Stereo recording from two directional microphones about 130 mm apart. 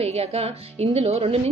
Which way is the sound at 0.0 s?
50° right (ahead or behind).